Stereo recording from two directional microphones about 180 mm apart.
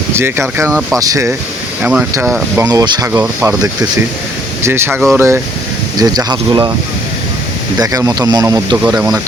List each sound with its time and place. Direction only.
0.2 s speech: 15° right (ahead or behind)
1.8 s speech: 5° right (ahead or behind); by 6.7 s 20° right (ahead or behind)
7.8 s speech: 20° right (ahead or behind)
8.7 s speech: 5° right (ahead or behind)